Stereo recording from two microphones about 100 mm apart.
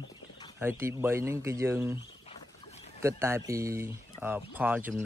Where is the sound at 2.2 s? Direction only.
90° left.